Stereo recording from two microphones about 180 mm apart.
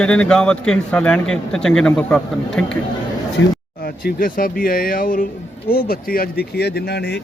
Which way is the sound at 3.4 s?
90° left.